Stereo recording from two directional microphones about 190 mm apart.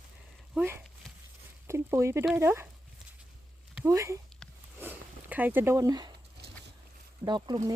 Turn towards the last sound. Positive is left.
turn(degrees=-20)  # may be behind; listen again after turning